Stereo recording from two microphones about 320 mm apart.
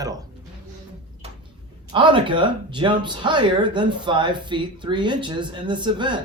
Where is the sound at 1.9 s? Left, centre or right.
Centre.